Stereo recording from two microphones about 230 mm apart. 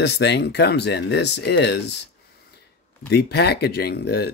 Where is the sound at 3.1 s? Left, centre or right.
Left.